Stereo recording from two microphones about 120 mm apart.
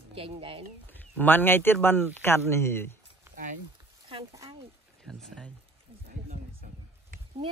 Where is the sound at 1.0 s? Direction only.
15° left (ahead or behind).